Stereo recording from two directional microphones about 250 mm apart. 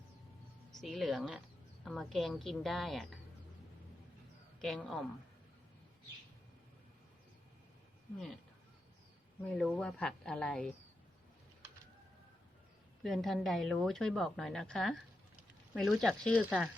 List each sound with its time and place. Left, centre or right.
0.8 s a woman's voice: centre
4.6 s a woman's voice: centre
9.6 s a woman's voice: centre
13.0 s a woman's voice: centre